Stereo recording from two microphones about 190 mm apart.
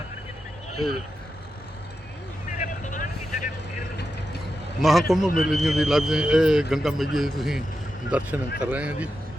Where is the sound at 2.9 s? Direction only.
45° left (ahead or behind).